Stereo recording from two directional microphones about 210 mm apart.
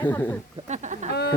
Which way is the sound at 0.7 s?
35° right (ahead or behind).